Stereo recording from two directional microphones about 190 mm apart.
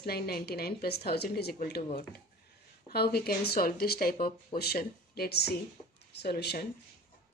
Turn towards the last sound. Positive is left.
turn(degrees=60)  # may be behind; listen again after turning